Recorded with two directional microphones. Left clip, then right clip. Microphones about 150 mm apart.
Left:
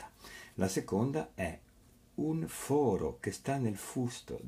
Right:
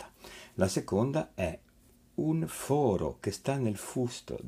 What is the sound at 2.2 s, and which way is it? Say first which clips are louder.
Speech: right 3 dB; 20° right (ahead or behind).